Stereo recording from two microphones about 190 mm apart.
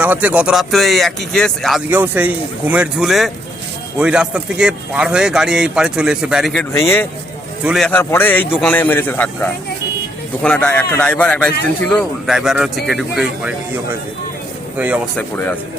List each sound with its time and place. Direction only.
0.0 s a man's voice: 10° right (ahead or behind)
1.9 s a man's voice: 10° right (ahead or behind)
6.7 s a man's voice: 15° left (ahead or behind)
7.6 s a man's voice: 5° right (ahead or behind)
7.9 s a man's voice: 10° left (ahead or behind)
14.8 s speech: 10° right (ahead or behind)
15.1 s a man's voice: 10° left (ahead or behind)